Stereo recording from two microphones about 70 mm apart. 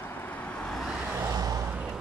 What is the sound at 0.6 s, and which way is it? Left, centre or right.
Vehicle, centre.